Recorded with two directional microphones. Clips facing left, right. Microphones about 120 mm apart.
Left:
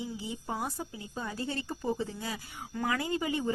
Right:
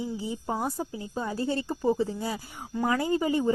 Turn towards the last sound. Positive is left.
turn(degrees=-35)  # may be behind; listen again after turning